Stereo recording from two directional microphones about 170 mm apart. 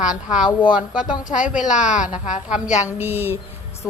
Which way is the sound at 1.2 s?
50° left (ahead or behind).